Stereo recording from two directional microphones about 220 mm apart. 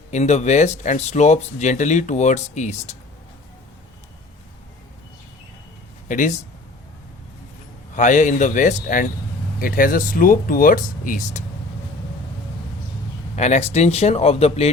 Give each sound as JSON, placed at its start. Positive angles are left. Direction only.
{"t": 0.1, "sound": "speech", "side_deg": 30}
{"t": 6.1, "sound": "speech", "side_deg": 35}
{"t": 7.9, "sound": "speech", "side_deg": 35}
{"t": 13.3, "sound": "speech", "side_deg": 30}